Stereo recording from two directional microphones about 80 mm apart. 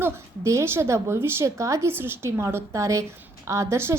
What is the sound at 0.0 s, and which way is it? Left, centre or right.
A woman's voice, right.